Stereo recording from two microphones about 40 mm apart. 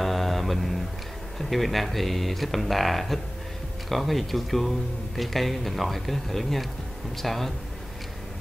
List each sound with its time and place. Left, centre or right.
0.0 s mantra: centre
1.4 s speech: centre